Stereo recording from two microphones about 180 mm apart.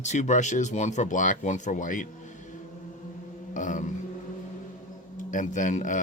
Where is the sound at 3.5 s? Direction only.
45° left (ahead or behind).